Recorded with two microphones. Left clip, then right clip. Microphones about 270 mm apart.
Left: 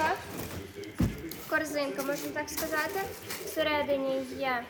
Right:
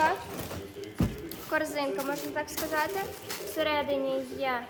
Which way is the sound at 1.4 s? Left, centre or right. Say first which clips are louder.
Right 1 dB; centre.